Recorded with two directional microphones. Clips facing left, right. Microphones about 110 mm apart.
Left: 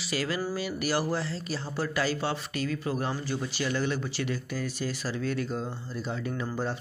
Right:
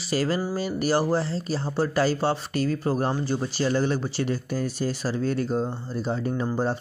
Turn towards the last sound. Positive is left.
turn(degrees=-35)  # may be behind; listen again after turning